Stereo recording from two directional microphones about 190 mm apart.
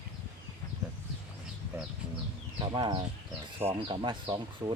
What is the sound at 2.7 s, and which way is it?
Speech, 25° right (ahead or behind).